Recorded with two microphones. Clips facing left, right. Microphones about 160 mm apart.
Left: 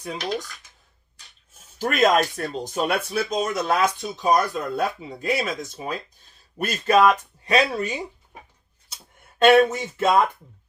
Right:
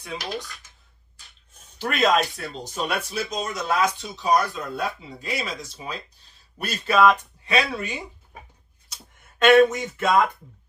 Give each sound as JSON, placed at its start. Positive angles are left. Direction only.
{"t": 0.0, "sound": "speech", "side_deg": 40}
{"t": 1.8, "sound": "speech", "side_deg": 45}
{"t": 9.4, "sound": "speech", "side_deg": 30}